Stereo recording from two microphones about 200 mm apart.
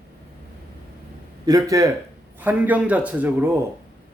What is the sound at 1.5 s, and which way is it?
A man's voice, 15° right (ahead or behind).